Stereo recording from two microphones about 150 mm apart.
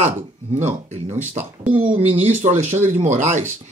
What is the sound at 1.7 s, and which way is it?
Speech, 35° right (ahead or behind).